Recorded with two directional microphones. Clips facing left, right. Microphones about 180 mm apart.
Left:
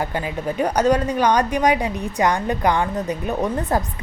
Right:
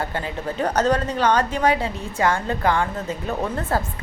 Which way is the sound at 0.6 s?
10° left (ahead or behind).